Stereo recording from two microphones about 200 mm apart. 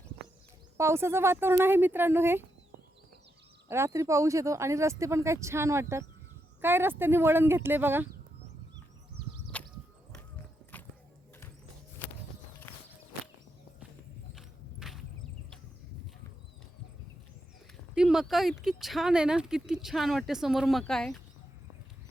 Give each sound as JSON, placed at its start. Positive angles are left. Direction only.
{"t": 0.8, "sound": "speech", "side_deg": -15}
{"t": 3.7, "sound": "speech", "side_deg": -15}
{"t": 9.5, "sound": "a sound", "side_deg": 5}
{"t": 12.7, "sound": "walk", "side_deg": 10}
{"t": 14.3, "sound": "horse", "side_deg": 0}
{"t": 17.9, "sound": "a sound", "side_deg": -5}
{"t": 18.6, "sound": "speech", "side_deg": 0}